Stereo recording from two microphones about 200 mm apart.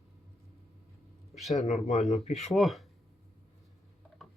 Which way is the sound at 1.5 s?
35° left (ahead or behind).